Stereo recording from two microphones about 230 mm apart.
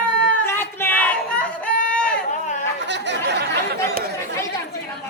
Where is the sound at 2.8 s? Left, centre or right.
Right.